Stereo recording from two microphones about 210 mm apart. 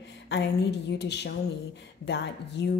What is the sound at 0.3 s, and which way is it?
A woman's voice, 55° left (ahead or behind).